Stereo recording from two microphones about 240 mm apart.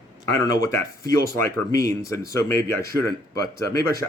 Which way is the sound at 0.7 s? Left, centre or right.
Centre.